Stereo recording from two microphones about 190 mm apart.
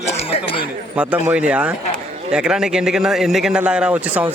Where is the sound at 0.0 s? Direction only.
30° left (ahead or behind).